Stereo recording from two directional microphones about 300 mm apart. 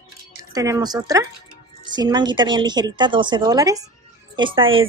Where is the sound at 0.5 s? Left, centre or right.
Centre.